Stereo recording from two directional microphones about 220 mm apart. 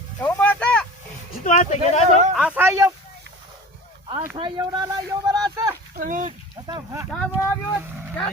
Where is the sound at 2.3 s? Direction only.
5° right (ahead or behind).